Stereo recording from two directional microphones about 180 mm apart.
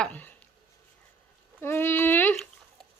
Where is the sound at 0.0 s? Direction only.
10° left (ahead or behind).